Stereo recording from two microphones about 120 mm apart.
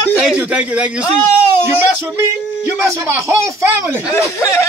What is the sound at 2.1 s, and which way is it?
Speech, 25° right (ahead or behind).